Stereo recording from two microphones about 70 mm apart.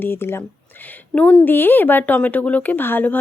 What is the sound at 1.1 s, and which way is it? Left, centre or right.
A woman's voice, centre.